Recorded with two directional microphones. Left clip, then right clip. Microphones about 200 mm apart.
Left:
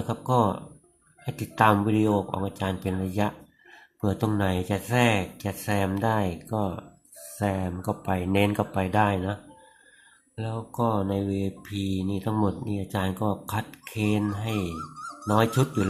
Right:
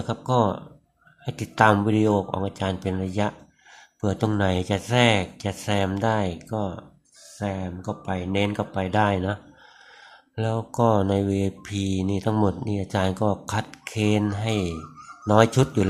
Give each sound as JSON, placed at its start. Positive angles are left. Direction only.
{"t": 0.1, "sound": "speech", "side_deg": -10}